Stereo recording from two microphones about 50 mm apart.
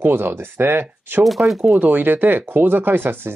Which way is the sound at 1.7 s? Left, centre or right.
Right.